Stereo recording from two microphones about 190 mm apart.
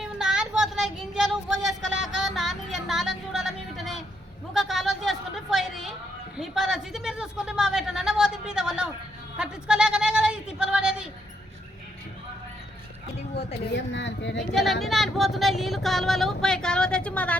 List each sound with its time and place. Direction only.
0.0 s child singing: 5° right (ahead or behind)
2.2 s a sound: centre (ahead or behind)
4.5 s chatter: centre (ahead or behind)
6.3 s a woman's voice: 5° right (ahead or behind)
9.4 s a sound: 5° right (ahead or behind)
13.7 s speech: 70° left (ahead or behind)
14.3 s speech: centre (ahead or behind)